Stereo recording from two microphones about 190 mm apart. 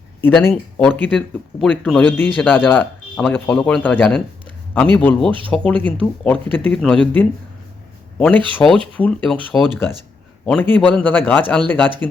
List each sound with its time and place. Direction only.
0.2 s speech: 10° left (ahead or behind)
8.5 s speech: 5° left (ahead or behind)